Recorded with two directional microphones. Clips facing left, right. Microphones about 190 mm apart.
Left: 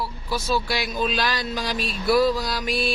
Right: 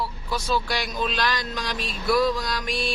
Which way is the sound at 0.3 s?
5° left (ahead or behind).